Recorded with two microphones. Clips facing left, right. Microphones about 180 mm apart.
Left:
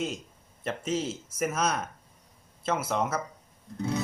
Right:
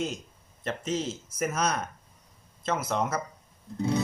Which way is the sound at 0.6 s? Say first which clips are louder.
Even; 5° left (ahead or behind).